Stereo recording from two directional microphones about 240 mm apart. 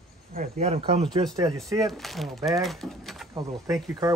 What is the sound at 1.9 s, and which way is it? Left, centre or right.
Speech, centre.